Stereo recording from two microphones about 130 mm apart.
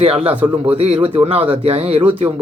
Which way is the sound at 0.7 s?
50° right (ahead or behind).